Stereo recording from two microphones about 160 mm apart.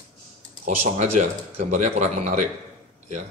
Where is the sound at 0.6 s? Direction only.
45° right (ahead or behind).